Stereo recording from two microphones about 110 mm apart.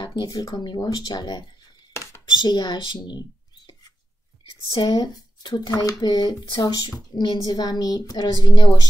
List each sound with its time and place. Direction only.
0.0 s speech: 40° left (ahead or behind)
4.8 s speech: 40° left (ahead or behind)